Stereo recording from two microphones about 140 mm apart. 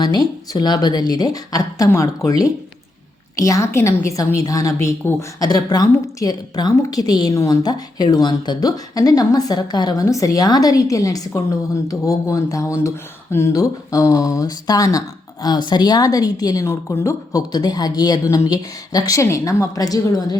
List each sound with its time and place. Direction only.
0.0 s speech: 30° left (ahead or behind)